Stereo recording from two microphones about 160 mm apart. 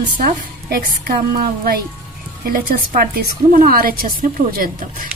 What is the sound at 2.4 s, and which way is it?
A woman's voice, 65° right (ahead or behind).